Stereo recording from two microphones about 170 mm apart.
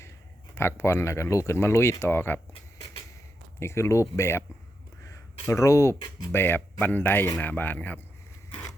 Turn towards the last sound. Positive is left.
turn(degrees=10)  # may be behind; listen again after turning